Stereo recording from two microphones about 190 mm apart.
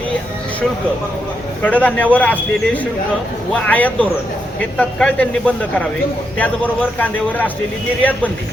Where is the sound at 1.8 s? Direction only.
10° left (ahead or behind).